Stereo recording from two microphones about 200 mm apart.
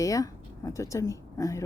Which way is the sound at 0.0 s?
15° left (ahead or behind).